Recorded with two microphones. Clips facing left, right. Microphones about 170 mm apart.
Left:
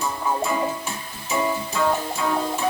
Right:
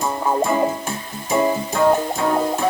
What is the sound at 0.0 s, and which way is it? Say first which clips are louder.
Music: right 5 dB; 50° right (ahead or behind).